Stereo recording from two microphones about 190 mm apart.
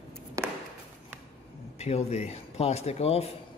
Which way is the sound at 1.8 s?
35° left (ahead or behind).